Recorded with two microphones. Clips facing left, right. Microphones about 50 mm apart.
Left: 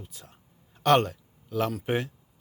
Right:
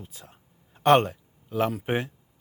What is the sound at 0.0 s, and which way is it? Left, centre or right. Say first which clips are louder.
A man's voice: right 2 dB; right.